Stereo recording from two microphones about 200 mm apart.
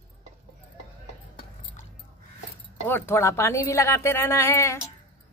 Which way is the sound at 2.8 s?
10° left (ahead or behind).